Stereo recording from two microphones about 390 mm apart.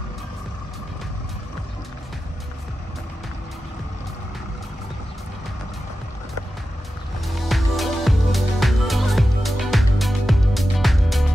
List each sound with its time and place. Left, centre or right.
7.2 s music: centre